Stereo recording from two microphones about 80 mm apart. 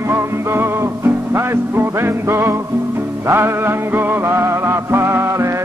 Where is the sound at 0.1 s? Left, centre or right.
Right.